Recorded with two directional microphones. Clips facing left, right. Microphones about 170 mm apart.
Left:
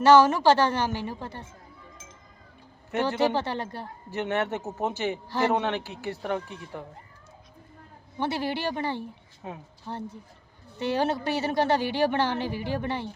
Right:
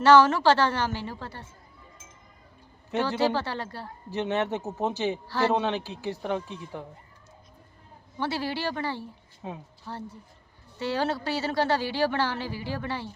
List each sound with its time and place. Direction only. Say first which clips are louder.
0.0 s a woman's voice: left 1 dB; 15° left (ahead or behind)
3.0 s a woman's voice: left 1 dB; 20° left (ahead or behind)
4.1 s speech: right 1 dB; 15° right (ahead or behind)
5.1 s a woman's voice: even; 20° left (ahead or behind)
5.6 s speech: right 1 dB; 15° right (ahead or behind)
8.2 s a woman's voice: left 1 dB; 20° left (ahead or behind)